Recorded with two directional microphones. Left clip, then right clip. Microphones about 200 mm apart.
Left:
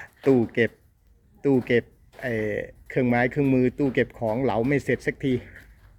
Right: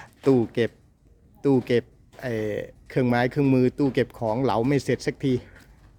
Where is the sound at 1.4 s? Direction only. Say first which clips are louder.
Even; 25° right (ahead or behind).